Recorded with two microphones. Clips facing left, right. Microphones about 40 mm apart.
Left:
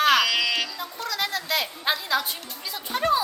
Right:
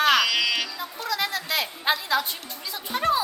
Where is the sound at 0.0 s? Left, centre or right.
Centre.